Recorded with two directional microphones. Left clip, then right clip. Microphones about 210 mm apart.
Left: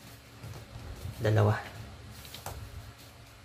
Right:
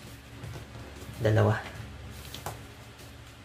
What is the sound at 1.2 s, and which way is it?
Speech, 10° left (ahead or behind).